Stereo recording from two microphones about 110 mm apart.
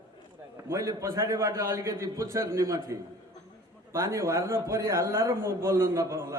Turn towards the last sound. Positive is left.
turn(degrees=-25)  # may be behind; listen again after turning